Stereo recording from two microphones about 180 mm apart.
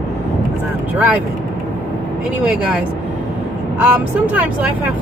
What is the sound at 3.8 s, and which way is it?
Speech, 10° right (ahead or behind).